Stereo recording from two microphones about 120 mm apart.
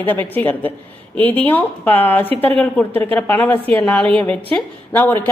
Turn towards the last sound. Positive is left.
turn(degrees=15)  # may be behind; listen again after turning